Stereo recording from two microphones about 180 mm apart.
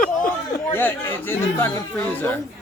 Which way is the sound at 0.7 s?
10° left (ahead or behind).